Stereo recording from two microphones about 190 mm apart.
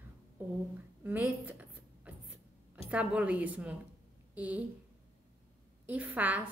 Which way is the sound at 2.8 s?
5° right (ahead or behind).